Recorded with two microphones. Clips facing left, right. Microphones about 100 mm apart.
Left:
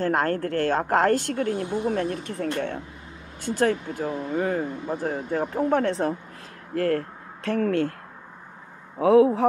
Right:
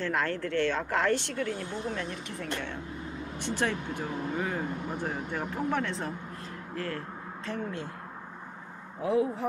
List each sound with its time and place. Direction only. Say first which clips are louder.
0.0 s a woman's voice: left 7 dB; 40° left (ahead or behind); by 7.9 s 80° left
9.0 s speech: left 11 dB; 90° left